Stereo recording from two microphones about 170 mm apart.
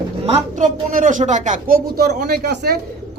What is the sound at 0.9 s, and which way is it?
A man's voice, 50° right (ahead or behind).